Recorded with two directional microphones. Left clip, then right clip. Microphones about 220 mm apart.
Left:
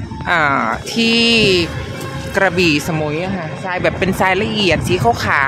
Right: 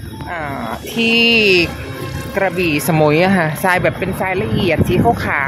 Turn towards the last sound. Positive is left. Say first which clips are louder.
# left 1 dB
turn(degrees=5)  # may be behind; listen again after turning